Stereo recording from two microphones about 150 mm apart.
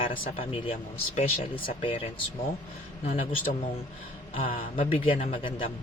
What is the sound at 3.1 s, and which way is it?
Speech, 40° left (ahead or behind).